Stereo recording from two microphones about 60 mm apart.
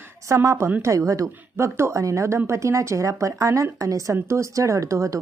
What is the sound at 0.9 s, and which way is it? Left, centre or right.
A woman's voice, right.